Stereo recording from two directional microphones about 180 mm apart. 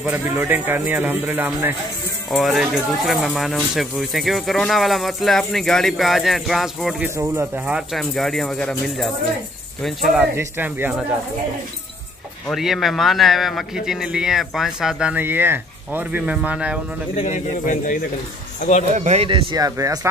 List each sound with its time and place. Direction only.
0.0 s speech: 10° right (ahead or behind)
2.3 s speech: centre (ahead or behind)
7.2 s speech: 10° right (ahead or behind)
12.4 s speech: centre (ahead or behind)
17.1 s speech: 40° left (ahead or behind)
18.9 s speech: 35° right (ahead or behind); by 20.1 s 20° right (ahead or behind)